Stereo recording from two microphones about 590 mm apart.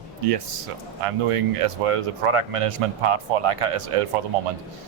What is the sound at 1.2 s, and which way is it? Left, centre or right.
Speech, right.